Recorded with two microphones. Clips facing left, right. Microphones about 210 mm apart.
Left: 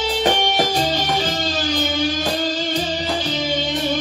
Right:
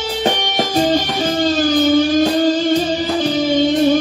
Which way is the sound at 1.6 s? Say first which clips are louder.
Right 8 dB; 50° right (ahead or behind).